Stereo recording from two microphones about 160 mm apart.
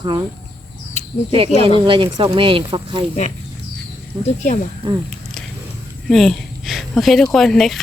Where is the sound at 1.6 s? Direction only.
30° right (ahead or behind).